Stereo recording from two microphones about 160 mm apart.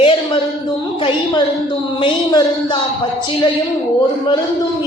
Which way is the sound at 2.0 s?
30° left (ahead or behind).